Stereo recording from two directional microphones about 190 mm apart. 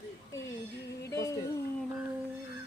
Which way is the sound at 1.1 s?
15° left (ahead or behind).